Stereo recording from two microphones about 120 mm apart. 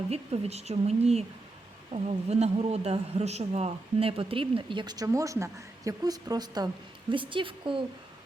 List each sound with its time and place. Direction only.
0.1 s a woman's voice: 60° right (ahead or behind)